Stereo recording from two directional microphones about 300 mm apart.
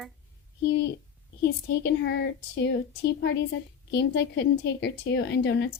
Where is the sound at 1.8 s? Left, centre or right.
Left.